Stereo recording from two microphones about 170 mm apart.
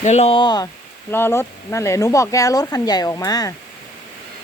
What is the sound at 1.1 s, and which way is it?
Speech, 15° left (ahead or behind).